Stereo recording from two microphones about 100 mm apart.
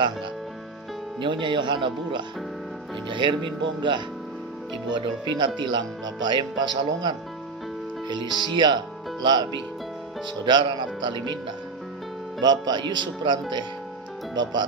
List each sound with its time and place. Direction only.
1.2 s speech: 50° right (ahead or behind)
12.4 s speech: 45° right (ahead or behind)